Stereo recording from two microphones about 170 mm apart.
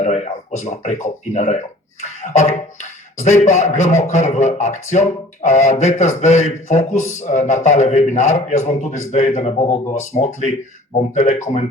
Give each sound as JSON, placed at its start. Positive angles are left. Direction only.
{"t": 0.0, "sound": "a man's voice", "side_deg": 40}